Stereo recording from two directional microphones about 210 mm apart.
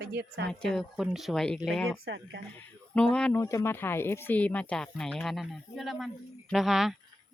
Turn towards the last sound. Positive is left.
turn(degrees=0)  # may be behind; listen again after turning